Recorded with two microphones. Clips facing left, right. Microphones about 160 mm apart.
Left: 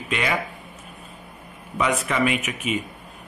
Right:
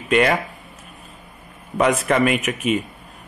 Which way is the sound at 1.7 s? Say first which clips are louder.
Right 5 dB; 50° right (ahead or behind).